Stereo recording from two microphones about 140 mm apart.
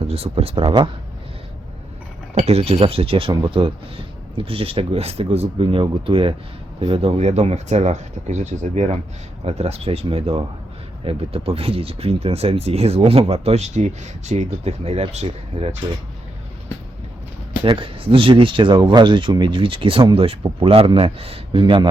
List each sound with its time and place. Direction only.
0.1 s speech: 45° right (ahead or behind)
2.4 s speech: 45° right (ahead or behind)
17.6 s speech: 40° right (ahead or behind)